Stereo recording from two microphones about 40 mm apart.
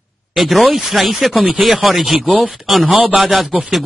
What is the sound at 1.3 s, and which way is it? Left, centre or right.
Speech, right.